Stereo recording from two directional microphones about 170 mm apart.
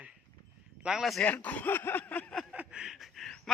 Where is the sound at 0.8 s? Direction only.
5° right (ahead or behind).